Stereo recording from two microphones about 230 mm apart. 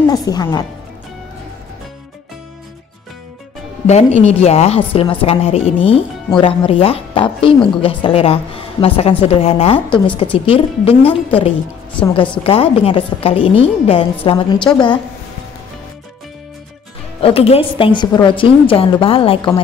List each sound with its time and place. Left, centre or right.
0.1 s speech: centre
4.2 s a woman's voice: left
17.2 s a woman's voice: left